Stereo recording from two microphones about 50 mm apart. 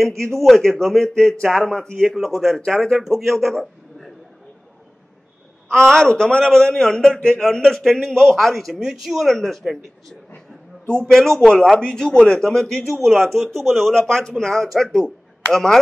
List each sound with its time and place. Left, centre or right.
0.4 s a man's voice: centre
2.0 s a man's voice: centre
3.0 s a man's voice: centre
5.7 s a man's voice: centre
7.6 s a man's voice: centre
11.1 s a man's voice: centre